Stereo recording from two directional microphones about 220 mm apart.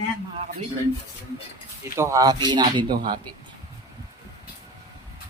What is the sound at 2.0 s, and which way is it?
Speech, 15° right (ahead or behind).